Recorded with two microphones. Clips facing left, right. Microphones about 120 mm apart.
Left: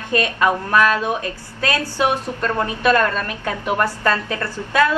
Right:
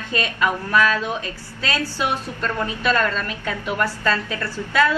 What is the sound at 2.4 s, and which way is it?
A woman's voice, 45° left (ahead or behind).